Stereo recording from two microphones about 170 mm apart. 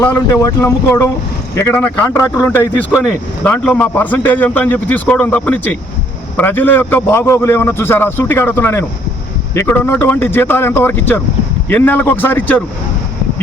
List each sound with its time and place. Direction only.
0.1 s a man's voice: 20° left (ahead or behind)